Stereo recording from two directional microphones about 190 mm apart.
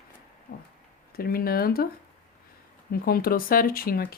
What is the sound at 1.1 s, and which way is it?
Speech, 55° left (ahead or behind).